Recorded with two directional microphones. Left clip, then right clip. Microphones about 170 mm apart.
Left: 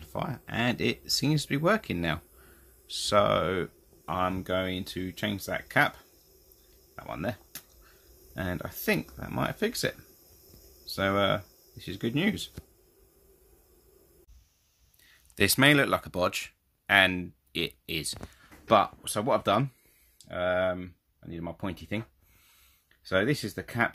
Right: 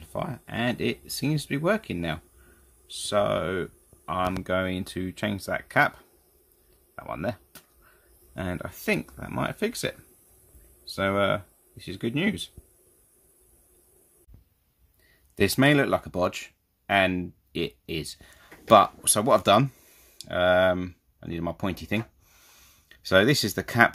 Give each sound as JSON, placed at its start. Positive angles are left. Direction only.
{"t": 0.0, "sound": "speech", "side_deg": -5}
{"t": 4.4, "sound": "speech", "side_deg": -15}
{"t": 7.0, "sound": "speech", "side_deg": -10}
{"t": 15.3, "sound": "speech", "side_deg": 0}